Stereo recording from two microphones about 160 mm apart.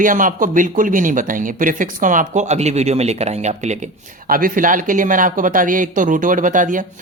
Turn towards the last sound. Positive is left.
turn(degrees=-55)  # may be behind; listen again after turning